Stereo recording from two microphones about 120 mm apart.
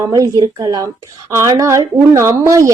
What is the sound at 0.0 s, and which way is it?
A woman's voice, 30° right (ahead or behind).